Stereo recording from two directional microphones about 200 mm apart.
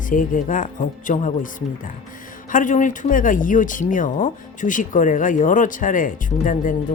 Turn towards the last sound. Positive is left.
turn(degrees=40)  # may be behind; listen again after turning